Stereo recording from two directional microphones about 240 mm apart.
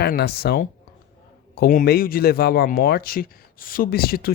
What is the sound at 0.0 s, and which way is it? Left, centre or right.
Speech, left.